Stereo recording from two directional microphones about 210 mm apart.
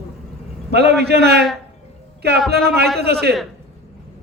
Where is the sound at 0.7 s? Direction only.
50° right (ahead or behind).